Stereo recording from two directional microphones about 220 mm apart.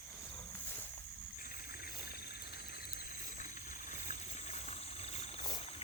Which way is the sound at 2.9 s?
35° left (ahead or behind).